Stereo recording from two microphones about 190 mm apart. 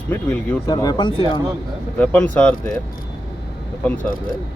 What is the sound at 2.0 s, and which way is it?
Speech, 5° left (ahead or behind).